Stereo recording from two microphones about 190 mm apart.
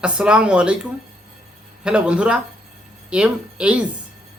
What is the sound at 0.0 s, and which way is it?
Speech, 5° right (ahead or behind).